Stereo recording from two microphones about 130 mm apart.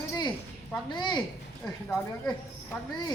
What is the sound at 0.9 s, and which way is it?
Speech, 35° left (ahead or behind).